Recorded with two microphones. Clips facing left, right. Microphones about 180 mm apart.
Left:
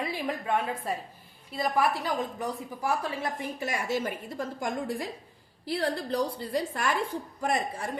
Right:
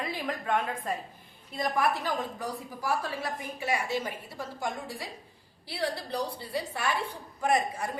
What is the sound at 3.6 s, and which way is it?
A woman's voice, 45° left (ahead or behind).